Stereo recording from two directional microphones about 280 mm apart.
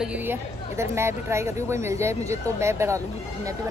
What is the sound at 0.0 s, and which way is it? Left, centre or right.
Chatter, centre.